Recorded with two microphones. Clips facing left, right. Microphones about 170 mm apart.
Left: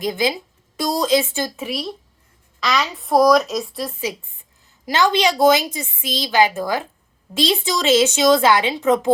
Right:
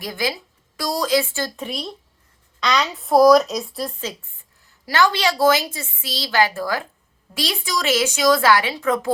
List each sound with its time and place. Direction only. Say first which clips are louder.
0.0 s a woman's voice: left 5 dB; 20° left (ahead or behind)
1.5 s a woman's voice: left 3 dB; 5° left (ahead or behind)
4.6 s a woman's voice: even; 20° left (ahead or behind)